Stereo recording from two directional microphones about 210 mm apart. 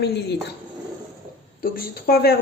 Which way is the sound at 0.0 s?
55° left (ahead or behind).